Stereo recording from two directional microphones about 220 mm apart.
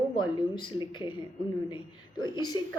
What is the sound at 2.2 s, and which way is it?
Speech, 20° left (ahead or behind).